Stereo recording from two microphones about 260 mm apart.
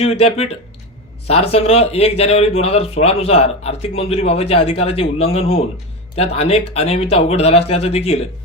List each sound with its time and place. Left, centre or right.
0.0 s speech: left